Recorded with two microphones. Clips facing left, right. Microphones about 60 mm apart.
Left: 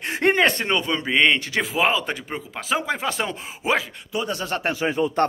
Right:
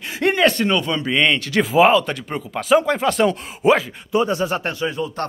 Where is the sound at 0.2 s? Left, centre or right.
Left.